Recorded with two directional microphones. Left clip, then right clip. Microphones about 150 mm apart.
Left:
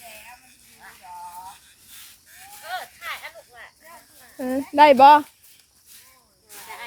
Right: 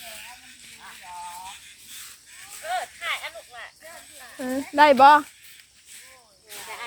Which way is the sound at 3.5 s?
90° left.